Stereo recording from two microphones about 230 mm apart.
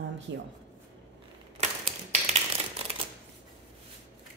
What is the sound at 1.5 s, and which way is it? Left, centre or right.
Typewriter, right.